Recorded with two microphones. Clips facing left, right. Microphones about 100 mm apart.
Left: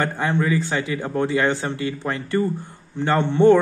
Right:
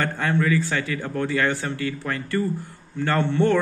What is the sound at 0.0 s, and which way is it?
A man's voice, 20° left (ahead or behind).